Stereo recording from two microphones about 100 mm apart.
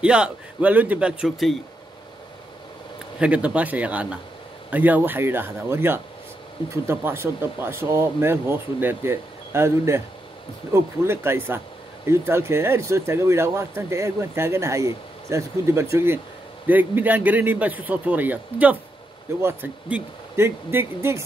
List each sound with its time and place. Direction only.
0.0 s a man's voice: 10° right (ahead or behind)
3.2 s a man's voice: 10° right (ahead or behind)